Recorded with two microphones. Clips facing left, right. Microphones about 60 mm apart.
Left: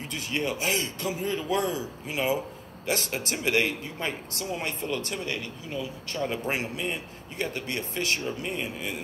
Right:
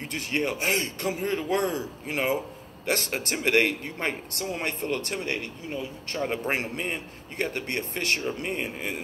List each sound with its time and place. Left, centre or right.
0.1 s speech: right